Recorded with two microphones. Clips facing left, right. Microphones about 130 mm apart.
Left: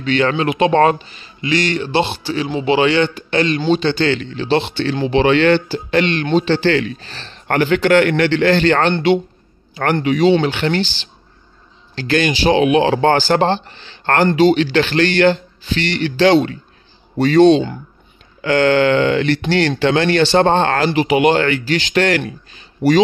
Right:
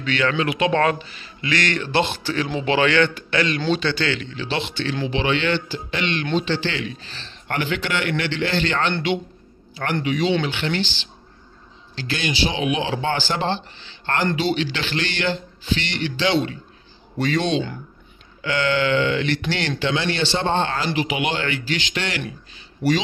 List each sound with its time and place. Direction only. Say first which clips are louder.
0.0 s speech: left 5 dB; 30° left (ahead or behind)
1.4 s speech: left 5 dB; 20° left (ahead or behind)
3.2 s speech: left 5 dB; 30° left (ahead or behind)
4.0 s speech: left 7 dB; 35° left (ahead or behind)
5.0 s speech: left 10 dB; 50° left (ahead or behind)
11.9 s speech: left 9 dB; 55° left (ahead or behind); by 17.7 s 35° left (ahead or behind)
18.4 s speech: left 8 dB; 50° left (ahead or behind)